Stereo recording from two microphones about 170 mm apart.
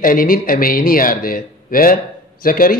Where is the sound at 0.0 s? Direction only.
55° left (ahead or behind).